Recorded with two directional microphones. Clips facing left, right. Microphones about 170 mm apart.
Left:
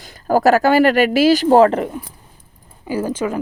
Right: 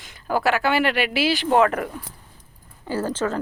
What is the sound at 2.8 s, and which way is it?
Speech, 10° left (ahead or behind).